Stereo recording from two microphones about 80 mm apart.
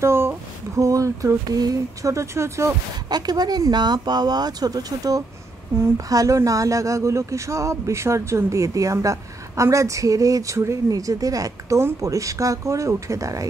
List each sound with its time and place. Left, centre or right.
0.0 s a sound: right
0.7 s speech: right
3.1 s speech: right